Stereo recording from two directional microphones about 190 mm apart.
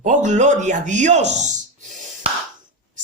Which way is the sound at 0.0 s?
40° right (ahead or behind).